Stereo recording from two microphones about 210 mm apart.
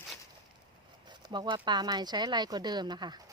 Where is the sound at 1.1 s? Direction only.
20° right (ahead or behind).